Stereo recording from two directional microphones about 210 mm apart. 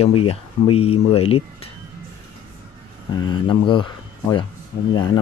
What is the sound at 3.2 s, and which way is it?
Speech, 20° left (ahead or behind).